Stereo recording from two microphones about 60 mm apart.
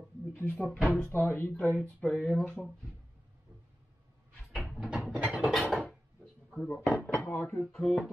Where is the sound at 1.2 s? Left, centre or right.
Left.